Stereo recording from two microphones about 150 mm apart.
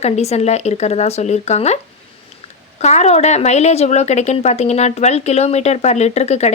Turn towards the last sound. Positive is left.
turn(degrees=45)  # may be behind; listen again after turning